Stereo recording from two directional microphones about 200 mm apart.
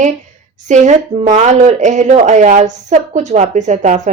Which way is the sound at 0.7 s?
35° right (ahead or behind).